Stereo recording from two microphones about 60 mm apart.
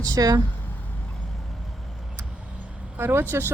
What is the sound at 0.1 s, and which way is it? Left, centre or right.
Speech, right.